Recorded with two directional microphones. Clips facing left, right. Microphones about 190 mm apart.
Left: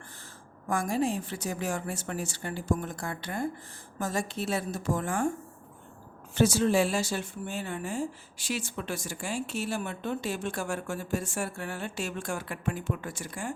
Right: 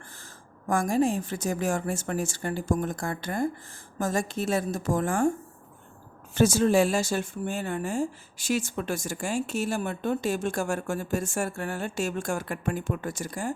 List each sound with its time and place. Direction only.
0.7 s speech: 45° right (ahead or behind)
6.3 s speech: 45° right (ahead or behind)